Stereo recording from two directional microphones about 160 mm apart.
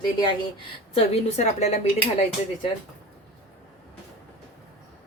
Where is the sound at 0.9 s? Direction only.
45° left (ahead or behind).